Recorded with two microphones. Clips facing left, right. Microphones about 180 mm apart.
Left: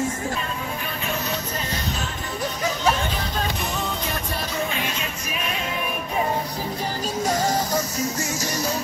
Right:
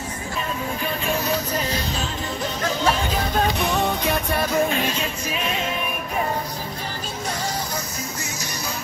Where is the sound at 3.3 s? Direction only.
65° right (ahead or behind).